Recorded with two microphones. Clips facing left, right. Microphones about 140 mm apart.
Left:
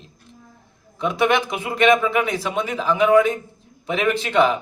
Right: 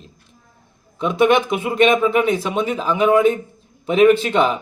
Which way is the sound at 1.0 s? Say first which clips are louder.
Right 4 dB; 20° right (ahead or behind).